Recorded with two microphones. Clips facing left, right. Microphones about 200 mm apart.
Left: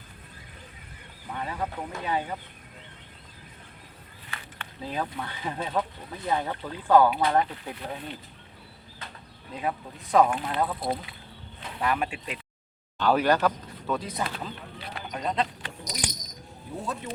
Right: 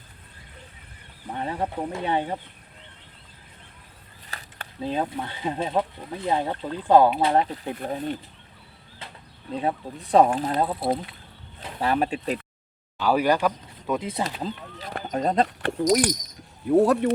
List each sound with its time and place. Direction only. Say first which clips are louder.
1.3 s speech: right 4 dB; 30° right (ahead or behind)
4.3 s a sound: right 1 dB; 40° right (ahead or behind)
4.9 s speech: right 5 dB; 25° right (ahead or behind)
7.8 s speech: right 8 dB; 45° right (ahead or behind)
9.6 s speech: right 4 dB; 30° right (ahead or behind)
11.8 s speech: right 4 dB; 35° right (ahead or behind)
13.0 s speech: right 1 dB; 10° right (ahead or behind)
14.4 s speech: right 5 dB; 45° right (ahead or behind)
15.4 s speech: right 19 dB; 65° right (ahead or behind)
16.6 s speech: right 16 dB; 75° right (ahead or behind)